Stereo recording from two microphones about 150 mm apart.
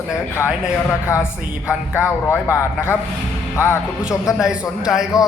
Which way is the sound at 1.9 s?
15° left (ahead or behind).